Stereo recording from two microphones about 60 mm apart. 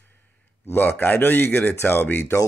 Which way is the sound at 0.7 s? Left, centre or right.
Left.